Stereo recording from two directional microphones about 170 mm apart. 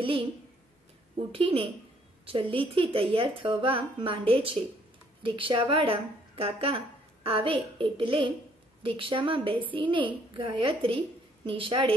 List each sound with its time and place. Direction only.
0.0 s a woman's voice: 30° right (ahead or behind)
1.3 s a woman's voice: 30° right (ahead or behind)